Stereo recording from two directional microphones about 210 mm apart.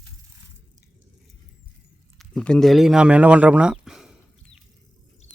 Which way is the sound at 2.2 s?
Centre (ahead or behind).